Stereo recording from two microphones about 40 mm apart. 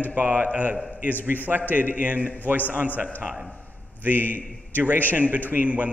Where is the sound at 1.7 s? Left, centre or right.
Right.